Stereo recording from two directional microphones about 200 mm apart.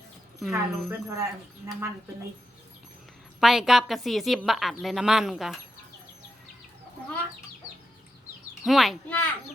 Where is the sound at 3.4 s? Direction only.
Centre (ahead or behind).